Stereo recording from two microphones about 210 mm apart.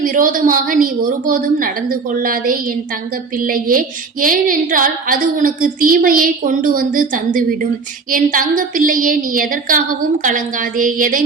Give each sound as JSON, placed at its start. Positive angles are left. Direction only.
{"t": 0.0, "sound": "a woman's voice", "side_deg": -40}